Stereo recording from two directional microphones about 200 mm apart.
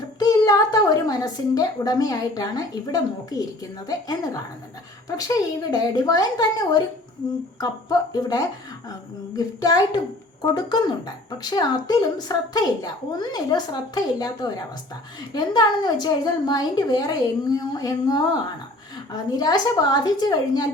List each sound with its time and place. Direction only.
0.2 s a woman's voice: 20° left (ahead or behind)